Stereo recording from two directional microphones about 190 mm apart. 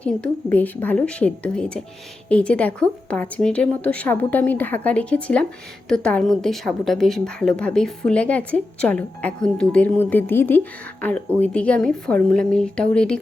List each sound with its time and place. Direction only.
0.0 s a woman's voice: 10° left (ahead or behind)